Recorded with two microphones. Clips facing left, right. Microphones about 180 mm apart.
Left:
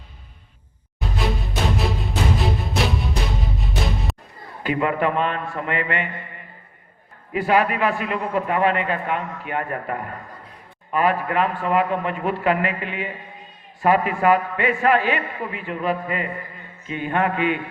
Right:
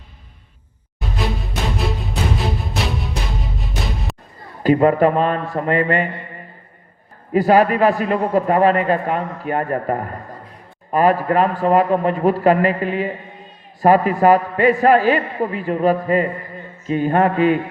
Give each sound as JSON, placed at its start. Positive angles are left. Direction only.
{"t": 0.9, "sound": "music", "side_deg": 0}
{"t": 4.6, "sound": "a man's voice", "side_deg": -40}
{"t": 7.3, "sound": "a man's voice", "side_deg": -40}